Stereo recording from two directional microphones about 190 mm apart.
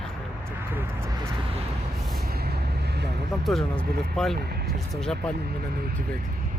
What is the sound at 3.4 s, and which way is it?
Speech, 5° left (ahead or behind).